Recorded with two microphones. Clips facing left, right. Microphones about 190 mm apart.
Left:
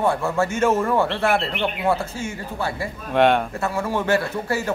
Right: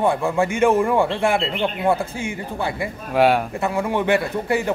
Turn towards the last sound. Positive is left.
turn(degrees=-15)  # may be behind; listen again after turning